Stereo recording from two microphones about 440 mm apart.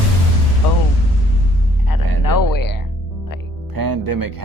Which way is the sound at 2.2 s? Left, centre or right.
Left.